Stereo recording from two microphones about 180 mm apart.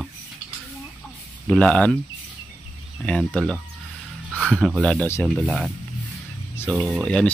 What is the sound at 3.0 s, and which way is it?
Speech, 5° left (ahead or behind).